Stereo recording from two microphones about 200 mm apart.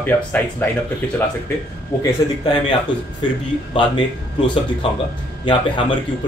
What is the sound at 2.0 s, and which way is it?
Speech, 20° left (ahead or behind).